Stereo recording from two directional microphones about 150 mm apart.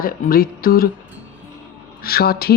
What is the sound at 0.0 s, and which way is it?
Speech, 75° left (ahead or behind).